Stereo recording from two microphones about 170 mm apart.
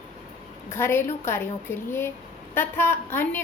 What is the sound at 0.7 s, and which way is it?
A woman's voice, 15° left (ahead or behind).